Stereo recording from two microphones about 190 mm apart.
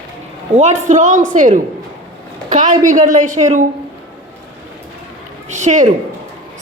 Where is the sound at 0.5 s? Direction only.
40° right (ahead or behind).